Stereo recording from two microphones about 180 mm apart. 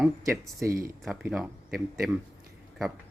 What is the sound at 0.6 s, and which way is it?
Speech, 15° right (ahead or behind).